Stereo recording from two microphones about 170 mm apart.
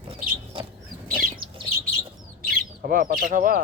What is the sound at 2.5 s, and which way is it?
Speech, 60° right (ahead or behind).